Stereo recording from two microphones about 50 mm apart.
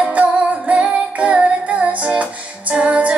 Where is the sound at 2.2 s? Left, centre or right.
Right.